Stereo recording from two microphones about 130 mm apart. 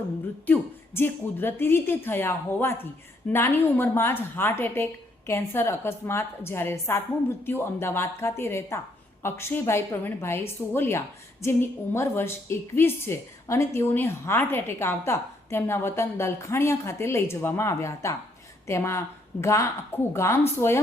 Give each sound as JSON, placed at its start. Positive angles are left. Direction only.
{"t": 0.4, "sound": "a woman's voice", "side_deg": 15}